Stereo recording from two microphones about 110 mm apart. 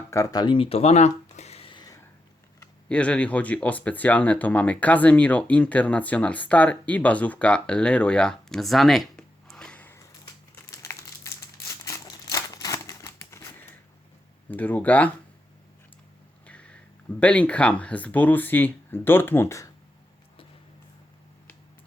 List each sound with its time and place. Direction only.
0.1 s speech: 30° left (ahead or behind); by 1.6 s 85° left
1.6 s a sound: 45° left (ahead or behind)
2.9 s speech: 10° left (ahead or behind)
10.7 s crumpling: 30° left (ahead or behind)
11.9 s a sound: 30° left (ahead or behind)
14.4 s speech: 15° left (ahead or behind)
16.5 s speech: 10° left (ahead or behind); by 19.7 s 25° left (ahead or behind)